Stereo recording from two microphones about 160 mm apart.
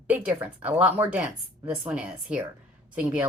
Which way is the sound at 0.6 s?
10° right (ahead or behind).